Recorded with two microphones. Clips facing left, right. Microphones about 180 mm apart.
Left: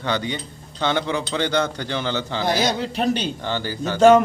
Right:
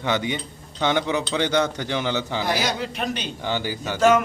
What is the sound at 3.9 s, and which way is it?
Speech, 35° left (ahead or behind).